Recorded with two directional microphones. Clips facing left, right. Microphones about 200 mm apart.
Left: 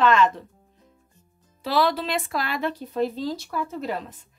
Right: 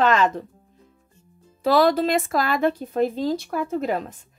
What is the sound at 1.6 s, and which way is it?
Speech, 45° right (ahead or behind).